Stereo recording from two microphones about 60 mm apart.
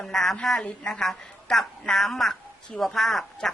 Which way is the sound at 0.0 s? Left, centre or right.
Centre.